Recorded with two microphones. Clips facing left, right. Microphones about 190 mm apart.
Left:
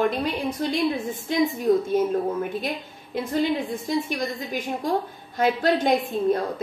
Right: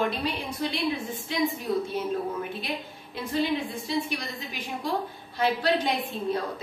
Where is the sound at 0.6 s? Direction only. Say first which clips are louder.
Left 4 dB; 45° left (ahead or behind).